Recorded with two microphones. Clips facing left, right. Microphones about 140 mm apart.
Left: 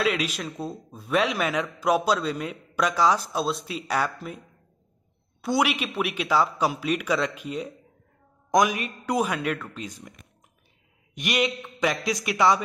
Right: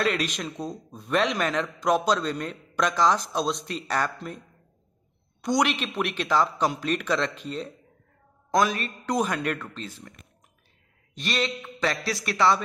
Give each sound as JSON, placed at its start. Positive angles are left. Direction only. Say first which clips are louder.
{"t": 0.0, "sound": "a man's voice", "louder": "left 1 dB", "side_deg": 5}
{"t": 5.4, "sound": "a man's voice", "louder": "even", "side_deg": 5}
{"t": 11.1, "sound": "a man's voice", "louder": "left 3 dB", "side_deg": 15}